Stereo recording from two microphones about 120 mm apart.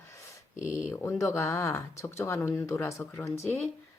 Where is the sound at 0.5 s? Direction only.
80° left.